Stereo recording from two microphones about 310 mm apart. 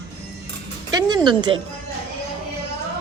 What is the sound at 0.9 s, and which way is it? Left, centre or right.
Music, centre.